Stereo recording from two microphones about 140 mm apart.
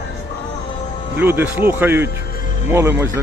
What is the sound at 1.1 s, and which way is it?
A man's voice, 15° right (ahead or behind).